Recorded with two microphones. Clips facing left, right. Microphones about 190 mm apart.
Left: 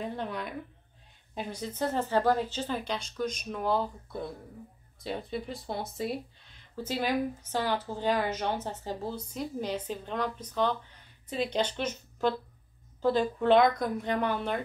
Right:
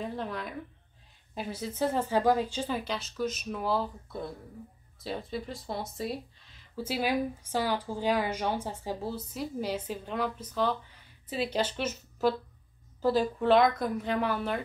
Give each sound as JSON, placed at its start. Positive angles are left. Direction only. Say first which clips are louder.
{"t": 0.0, "sound": "a woman's voice", "louder": "even", "side_deg": 0}